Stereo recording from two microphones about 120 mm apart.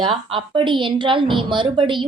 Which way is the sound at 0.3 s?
45° right (ahead or behind).